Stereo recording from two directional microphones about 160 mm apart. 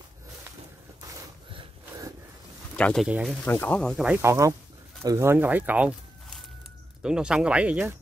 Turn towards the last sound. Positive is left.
turn(degrees=-10)  # may be behind; listen again after turning